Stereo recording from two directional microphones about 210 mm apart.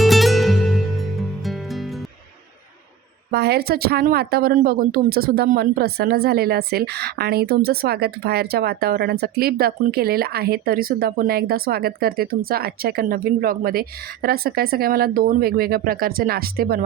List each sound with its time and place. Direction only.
0.0 s music: centre (ahead or behind)
3.3 s speech: 50° right (ahead or behind)